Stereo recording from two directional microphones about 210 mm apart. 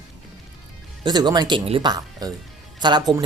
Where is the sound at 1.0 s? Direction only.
20° right (ahead or behind).